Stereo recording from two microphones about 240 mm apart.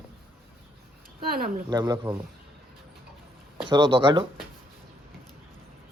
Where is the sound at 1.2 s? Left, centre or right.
Right.